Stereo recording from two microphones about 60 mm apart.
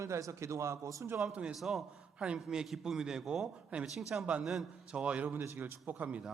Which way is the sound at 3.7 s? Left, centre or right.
Right.